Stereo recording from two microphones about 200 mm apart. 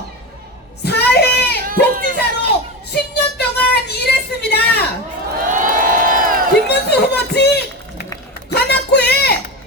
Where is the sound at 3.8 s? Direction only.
55° left (ahead or behind).